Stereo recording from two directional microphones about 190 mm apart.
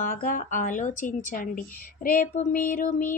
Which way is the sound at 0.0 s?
45° left (ahead or behind).